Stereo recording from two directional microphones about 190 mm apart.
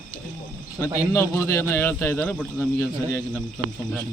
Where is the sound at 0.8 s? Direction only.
15° left (ahead or behind).